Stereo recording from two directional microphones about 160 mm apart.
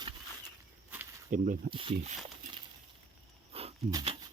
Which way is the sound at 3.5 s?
40° right (ahead or behind).